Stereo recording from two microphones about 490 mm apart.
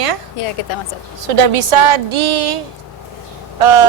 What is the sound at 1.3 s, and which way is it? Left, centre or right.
A woman's voice, right.